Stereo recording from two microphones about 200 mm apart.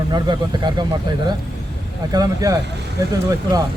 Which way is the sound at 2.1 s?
20° right (ahead or behind).